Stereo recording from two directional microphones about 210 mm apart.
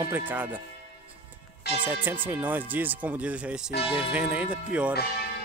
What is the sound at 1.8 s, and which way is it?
Speech, 10° right (ahead or behind).